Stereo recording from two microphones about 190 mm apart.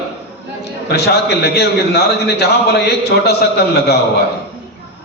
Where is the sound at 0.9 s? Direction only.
60° left (ahead or behind).